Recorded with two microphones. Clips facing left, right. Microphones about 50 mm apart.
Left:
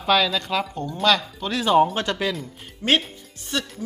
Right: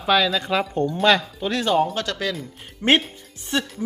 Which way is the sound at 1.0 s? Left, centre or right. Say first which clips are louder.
Right 1 dB; centre.